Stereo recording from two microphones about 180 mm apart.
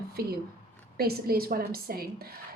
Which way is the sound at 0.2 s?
55° right (ahead or behind).